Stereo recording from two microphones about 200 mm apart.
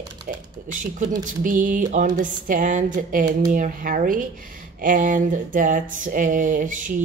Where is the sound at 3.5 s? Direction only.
40° right (ahead or behind).